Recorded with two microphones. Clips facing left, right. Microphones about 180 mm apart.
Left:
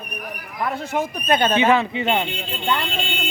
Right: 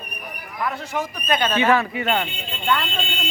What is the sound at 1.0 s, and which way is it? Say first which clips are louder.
Speech: left 3 dB; 25° left (ahead or behind).